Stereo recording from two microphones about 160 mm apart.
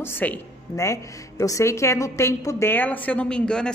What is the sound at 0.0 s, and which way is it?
A woman's voice, 10° left (ahead or behind).